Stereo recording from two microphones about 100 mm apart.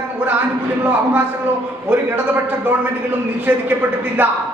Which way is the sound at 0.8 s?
20° right (ahead or behind).